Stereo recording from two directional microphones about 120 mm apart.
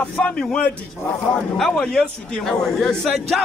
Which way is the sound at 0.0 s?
10° left (ahead or behind).